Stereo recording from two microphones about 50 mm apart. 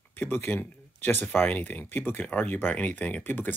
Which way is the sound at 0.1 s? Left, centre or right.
Left.